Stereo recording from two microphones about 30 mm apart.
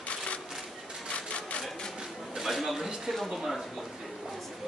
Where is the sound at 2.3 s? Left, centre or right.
Centre.